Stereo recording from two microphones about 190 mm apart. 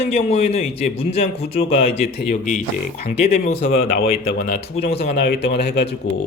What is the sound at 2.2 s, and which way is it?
Speech, 50° left (ahead or behind).